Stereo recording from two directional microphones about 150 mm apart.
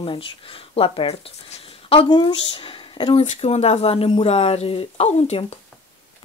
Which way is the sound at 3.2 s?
45° left (ahead or behind).